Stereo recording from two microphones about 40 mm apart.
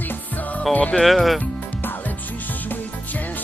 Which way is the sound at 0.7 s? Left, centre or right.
Left.